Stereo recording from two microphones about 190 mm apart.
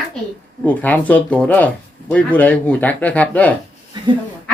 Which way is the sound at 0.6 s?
10° left (ahead or behind).